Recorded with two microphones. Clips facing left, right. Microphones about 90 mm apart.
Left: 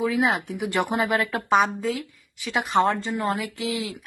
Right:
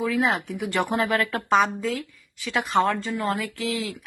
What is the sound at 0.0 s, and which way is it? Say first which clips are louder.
Speech: left 1 dB; 10° left (ahead or behind).